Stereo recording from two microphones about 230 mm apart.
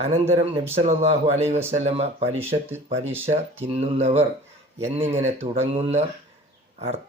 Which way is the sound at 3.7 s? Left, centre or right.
Right.